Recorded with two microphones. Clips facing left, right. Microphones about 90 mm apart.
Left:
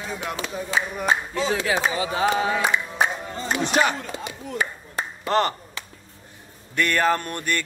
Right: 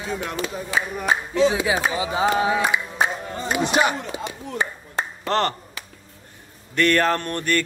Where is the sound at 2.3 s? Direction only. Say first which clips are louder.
Right 2 dB; 10° right (ahead or behind).